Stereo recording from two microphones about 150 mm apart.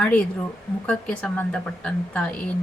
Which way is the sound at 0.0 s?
5° left (ahead or behind).